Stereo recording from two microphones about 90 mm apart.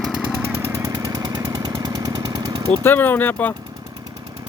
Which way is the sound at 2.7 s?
20° left (ahead or behind).